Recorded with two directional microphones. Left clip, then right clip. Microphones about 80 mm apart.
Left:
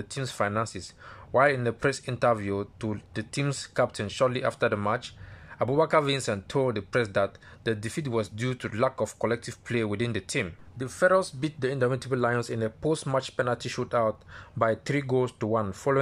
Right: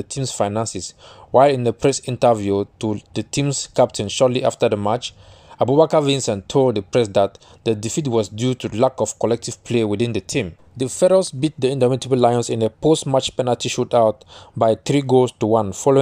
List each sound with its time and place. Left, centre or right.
0.1 s speech: right